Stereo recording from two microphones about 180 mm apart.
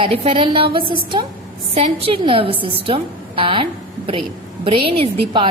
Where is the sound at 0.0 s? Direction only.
30° right (ahead or behind).